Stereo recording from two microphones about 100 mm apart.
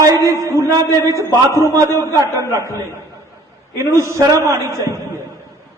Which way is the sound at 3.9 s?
30° right (ahead or behind).